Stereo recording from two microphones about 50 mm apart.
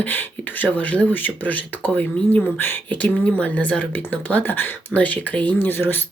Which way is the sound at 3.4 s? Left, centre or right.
Left.